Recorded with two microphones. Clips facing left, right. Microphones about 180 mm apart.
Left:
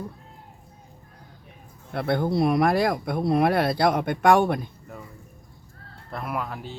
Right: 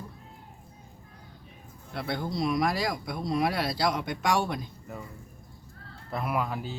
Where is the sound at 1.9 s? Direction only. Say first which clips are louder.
Left 8 dB; 55° left (ahead or behind).